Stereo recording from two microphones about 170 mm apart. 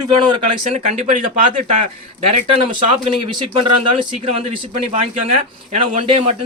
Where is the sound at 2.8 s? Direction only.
30° right (ahead or behind).